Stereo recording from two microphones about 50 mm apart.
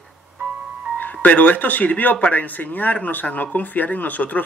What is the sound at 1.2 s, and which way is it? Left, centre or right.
Speech, left.